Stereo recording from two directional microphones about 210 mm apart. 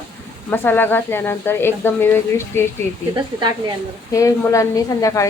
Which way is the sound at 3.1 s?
20° right (ahead or behind).